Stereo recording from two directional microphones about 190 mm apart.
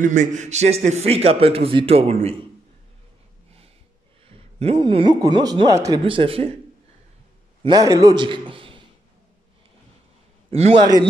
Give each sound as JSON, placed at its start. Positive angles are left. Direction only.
{"t": 0.0, "sound": "a man's voice", "side_deg": -40}
{"t": 4.3, "sound": "speech", "side_deg": -30}
{"t": 7.6, "sound": "a man's voice", "side_deg": -20}
{"t": 10.5, "sound": "a man's voice", "side_deg": -35}